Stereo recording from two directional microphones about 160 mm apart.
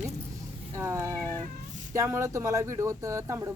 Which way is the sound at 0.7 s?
15° right (ahead or behind).